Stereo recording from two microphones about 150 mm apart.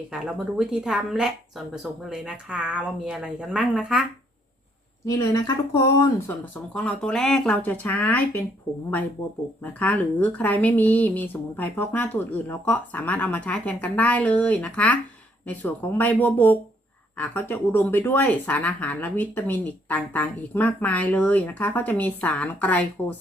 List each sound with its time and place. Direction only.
0.1 s speech: 5° right (ahead or behind)
5.0 s speech: 25° left (ahead or behind)
6.2 s speech: 10° left (ahead or behind)
9.7 s speech: 10° left (ahead or behind)